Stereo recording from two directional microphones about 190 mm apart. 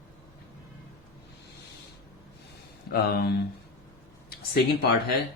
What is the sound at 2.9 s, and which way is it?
Speech, 55° left (ahead or behind).